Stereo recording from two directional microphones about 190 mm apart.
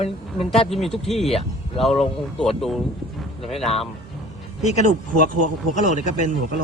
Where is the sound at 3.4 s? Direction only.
35° left (ahead or behind).